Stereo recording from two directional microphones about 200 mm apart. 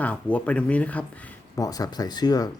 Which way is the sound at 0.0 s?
5° left (ahead or behind).